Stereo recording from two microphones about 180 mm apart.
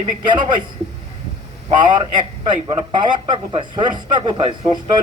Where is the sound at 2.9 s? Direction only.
25° right (ahead or behind).